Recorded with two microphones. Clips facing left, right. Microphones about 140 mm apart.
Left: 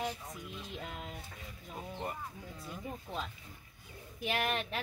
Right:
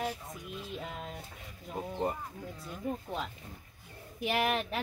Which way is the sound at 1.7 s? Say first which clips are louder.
Right 7 dB; 30° right (ahead or behind).